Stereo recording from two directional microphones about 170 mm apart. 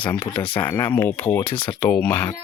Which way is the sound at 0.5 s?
25° left (ahead or behind).